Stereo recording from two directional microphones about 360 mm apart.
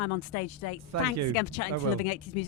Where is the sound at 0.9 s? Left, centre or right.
Right.